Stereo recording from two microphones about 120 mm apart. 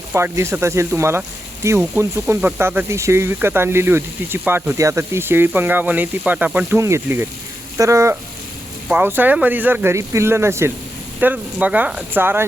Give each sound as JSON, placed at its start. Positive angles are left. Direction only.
{"t": 0.1, "sound": "speech", "side_deg": -20}